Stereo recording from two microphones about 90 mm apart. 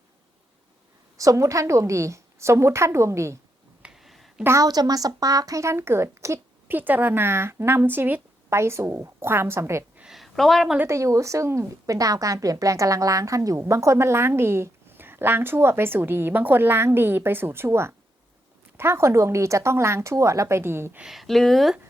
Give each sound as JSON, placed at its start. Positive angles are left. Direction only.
{"t": 1.1, "sound": "speech", "side_deg": -40}
{"t": 3.8, "sound": "a sound", "side_deg": -5}
{"t": 4.4, "sound": "speech", "side_deg": -40}
{"t": 6.7, "sound": "a woman's voice", "side_deg": -20}
{"t": 10.0, "sound": "a woman's voice", "side_deg": 0}
{"t": 10.8, "sound": "a woman's voice", "side_deg": -35}
{"t": 21.0, "sound": "speech", "side_deg": 0}